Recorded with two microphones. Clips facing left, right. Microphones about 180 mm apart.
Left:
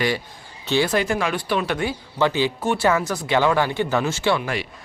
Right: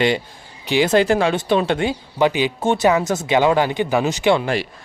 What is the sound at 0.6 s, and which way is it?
Speech, 15° right (ahead or behind).